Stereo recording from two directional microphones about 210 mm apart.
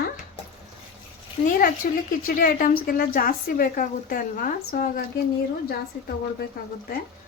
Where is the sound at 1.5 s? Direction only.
40° left (ahead or behind).